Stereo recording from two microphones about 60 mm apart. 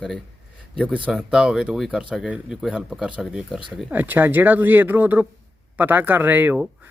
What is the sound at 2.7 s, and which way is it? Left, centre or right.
Speech, centre.